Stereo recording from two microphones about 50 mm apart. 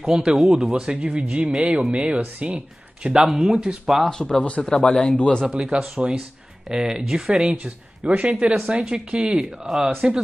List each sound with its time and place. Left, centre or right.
0.0 s speech: centre
1.5 s speech: centre
3.0 s speech: centre
4.1 s speech: centre
4.6 s speech: centre
5.5 s speech: centre
6.7 s speech: centre
8.2 s speech: right